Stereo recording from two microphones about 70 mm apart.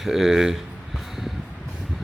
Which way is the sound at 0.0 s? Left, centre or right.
Centre.